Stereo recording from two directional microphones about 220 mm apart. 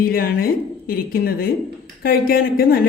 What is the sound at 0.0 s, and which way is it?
A woman's voice, 40° left (ahead or behind).